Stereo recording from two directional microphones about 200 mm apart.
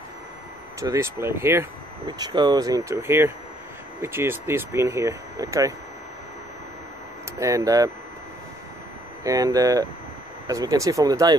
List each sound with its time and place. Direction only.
0.7 s speech: 15° right (ahead or behind)
7.3 s speech: 15° right (ahead or behind)
9.2 s speech: 15° right (ahead or behind)